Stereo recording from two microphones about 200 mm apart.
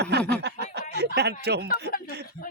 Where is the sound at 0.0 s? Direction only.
55° right (ahead or behind).